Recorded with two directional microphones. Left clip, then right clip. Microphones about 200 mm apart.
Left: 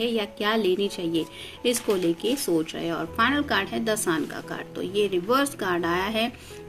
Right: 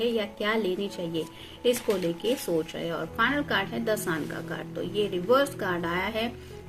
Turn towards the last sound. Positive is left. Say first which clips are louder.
# left 4 dB
turn(degrees=40)  # may be behind; listen again after turning